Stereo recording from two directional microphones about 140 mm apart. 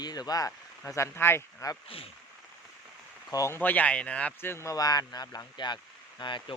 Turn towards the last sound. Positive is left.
turn(degrees=35)  # may be behind; listen again after turning